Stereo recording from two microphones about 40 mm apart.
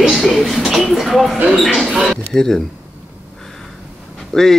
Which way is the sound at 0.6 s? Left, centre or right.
Centre.